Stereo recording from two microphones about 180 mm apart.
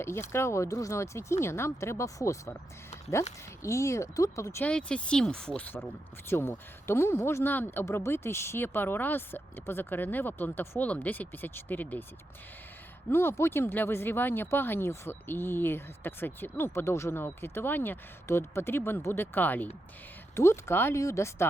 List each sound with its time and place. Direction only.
0.0 s speech: 15° left (ahead or behind)
3.6 s speech: 15° left (ahead or behind)
13.1 s speech: 15° left (ahead or behind)